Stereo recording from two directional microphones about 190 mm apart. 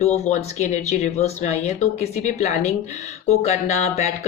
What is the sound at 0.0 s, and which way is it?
Speech, 35° left (ahead or behind).